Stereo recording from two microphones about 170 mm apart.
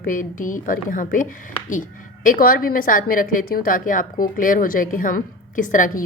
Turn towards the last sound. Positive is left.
turn(degrees=50)  # may be behind; listen again after turning